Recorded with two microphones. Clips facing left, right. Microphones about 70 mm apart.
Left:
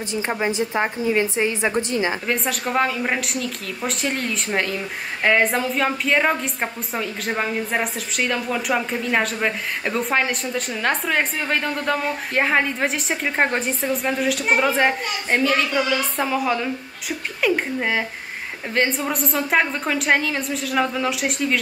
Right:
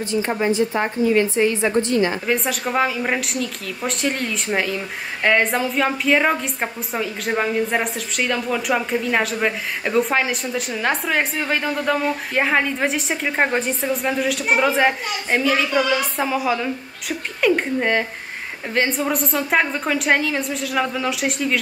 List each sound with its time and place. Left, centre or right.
0.3 s a woman's voice: centre
2.2 s a woman's voice: centre